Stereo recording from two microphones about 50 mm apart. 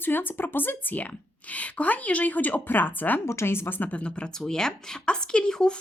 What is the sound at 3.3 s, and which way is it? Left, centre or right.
Speech, left.